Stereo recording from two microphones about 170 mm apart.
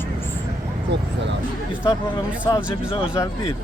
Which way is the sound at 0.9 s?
90° right.